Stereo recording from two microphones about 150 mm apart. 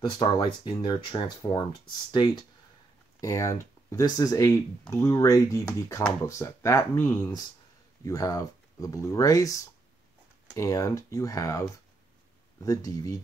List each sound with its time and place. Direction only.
0.0 s speech: 30° left (ahead or behind)
12.6 s speech: 25° left (ahead or behind)